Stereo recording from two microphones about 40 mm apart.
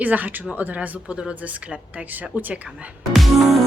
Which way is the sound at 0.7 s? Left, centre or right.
Right.